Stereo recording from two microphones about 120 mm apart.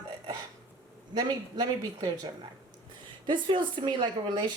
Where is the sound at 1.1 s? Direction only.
30° right (ahead or behind).